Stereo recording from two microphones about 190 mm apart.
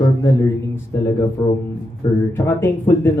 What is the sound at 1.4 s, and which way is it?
Speech, 20° left (ahead or behind).